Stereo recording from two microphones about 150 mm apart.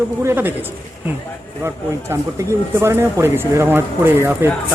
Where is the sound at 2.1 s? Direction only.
15° right (ahead or behind).